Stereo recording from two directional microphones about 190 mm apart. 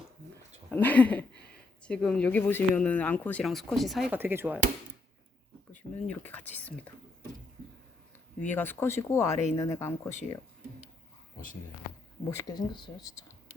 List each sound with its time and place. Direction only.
0.7 s speech: 10° left (ahead or behind); by 4.6 s 10° right (ahead or behind)
5.7 s speech: 10° left (ahead or behind)
8.4 s speech: 10° left (ahead or behind)
12.5 s speech: 25° left (ahead or behind)